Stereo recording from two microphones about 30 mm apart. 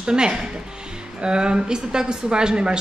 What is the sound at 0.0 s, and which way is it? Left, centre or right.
A woman's voice, right.